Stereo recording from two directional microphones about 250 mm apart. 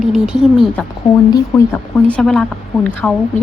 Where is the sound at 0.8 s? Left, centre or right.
Centre.